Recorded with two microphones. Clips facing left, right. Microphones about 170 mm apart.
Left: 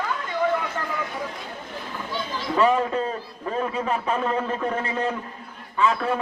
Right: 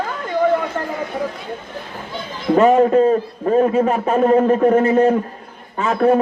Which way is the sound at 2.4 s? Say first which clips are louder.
Right 9 dB; 45° right (ahead or behind).